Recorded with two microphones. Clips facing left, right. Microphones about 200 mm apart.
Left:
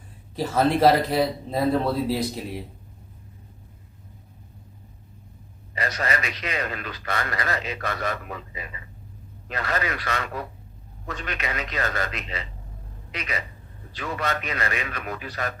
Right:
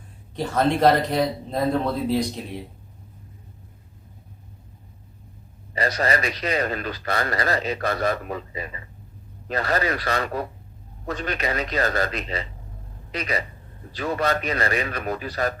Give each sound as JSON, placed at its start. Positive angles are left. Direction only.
{"t": 0.3, "sound": "speech", "side_deg": 5}
{"t": 5.7, "sound": "a man's voice", "side_deg": -35}